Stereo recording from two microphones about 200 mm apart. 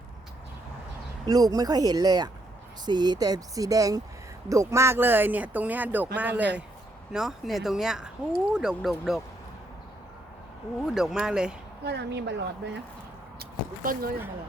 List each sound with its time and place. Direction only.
1.3 s speech: 20° right (ahead or behind); by 9.2 s centre (ahead or behind)
10.8 s speech: centre (ahead or behind)
11.9 s speech: 55° right (ahead or behind)
13.4 s speech: 45° right (ahead or behind)